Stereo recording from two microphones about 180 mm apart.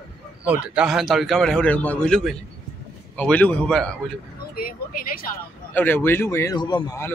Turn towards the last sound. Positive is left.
turn(degrees=20)  # may be behind; listen again after turning